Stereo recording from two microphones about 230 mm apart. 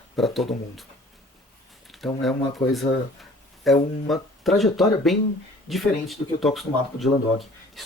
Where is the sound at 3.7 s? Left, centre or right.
Centre.